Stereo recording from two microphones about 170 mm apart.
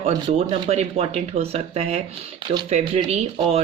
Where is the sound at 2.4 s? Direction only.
25° right (ahead or behind).